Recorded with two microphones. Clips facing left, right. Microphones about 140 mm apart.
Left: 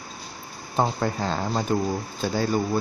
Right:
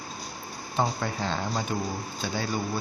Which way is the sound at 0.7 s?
40° left (ahead or behind).